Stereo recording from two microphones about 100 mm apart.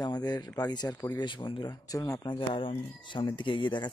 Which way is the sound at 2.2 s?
55° left (ahead or behind).